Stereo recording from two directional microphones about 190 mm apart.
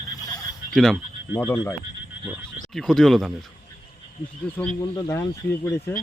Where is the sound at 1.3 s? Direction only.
15° left (ahead or behind).